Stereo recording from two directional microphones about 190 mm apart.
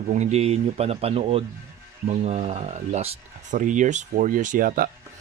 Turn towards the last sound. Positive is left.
turn(degrees=-50)  # may be behind; listen again after turning